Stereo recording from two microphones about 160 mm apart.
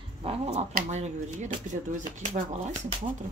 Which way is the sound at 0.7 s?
45° right (ahead or behind).